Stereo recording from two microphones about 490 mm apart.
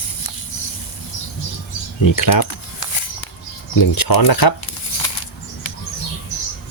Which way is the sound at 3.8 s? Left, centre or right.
Left.